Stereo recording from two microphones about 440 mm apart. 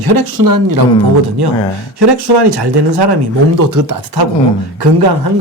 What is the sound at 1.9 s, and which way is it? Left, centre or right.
Speech, right.